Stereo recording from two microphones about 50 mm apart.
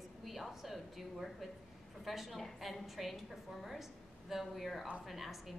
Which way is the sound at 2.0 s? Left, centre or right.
Centre.